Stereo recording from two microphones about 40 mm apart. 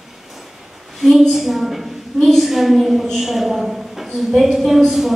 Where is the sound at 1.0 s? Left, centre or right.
Centre.